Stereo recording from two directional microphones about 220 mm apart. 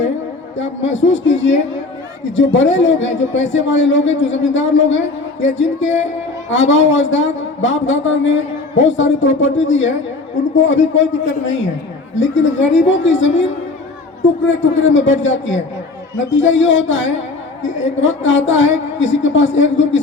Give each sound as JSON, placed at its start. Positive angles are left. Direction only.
{"t": 0.5, "sound": "a man's voice", "side_deg": 60}